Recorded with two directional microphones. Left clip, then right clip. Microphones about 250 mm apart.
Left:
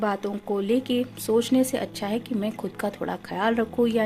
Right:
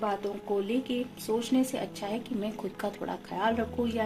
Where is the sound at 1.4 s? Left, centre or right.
Left.